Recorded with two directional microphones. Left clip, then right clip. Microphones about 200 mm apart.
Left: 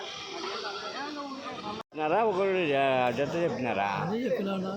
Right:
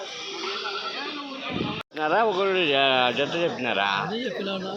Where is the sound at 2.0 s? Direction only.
Centre (ahead or behind).